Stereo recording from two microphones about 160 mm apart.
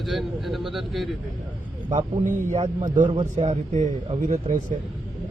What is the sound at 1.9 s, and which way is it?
Speech, 55° right (ahead or behind).